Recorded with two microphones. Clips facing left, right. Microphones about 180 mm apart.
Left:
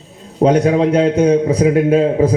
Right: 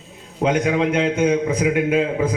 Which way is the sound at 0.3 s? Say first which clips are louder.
Left 7 dB; 35° left (ahead or behind).